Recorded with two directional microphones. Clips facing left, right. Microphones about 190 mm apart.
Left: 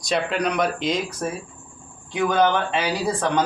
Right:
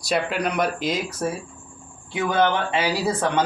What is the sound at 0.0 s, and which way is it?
Speech, 5° right (ahead or behind).